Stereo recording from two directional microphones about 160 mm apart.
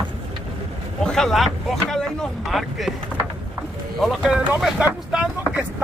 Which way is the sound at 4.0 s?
Centre (ahead or behind).